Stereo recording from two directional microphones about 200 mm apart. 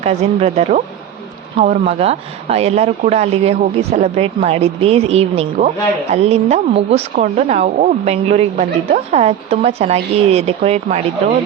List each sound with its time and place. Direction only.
0.0 s speech: 30° right (ahead or behind)